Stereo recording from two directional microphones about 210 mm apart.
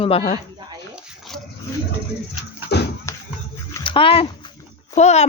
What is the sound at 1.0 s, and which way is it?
Dog, centre (ahead or behind).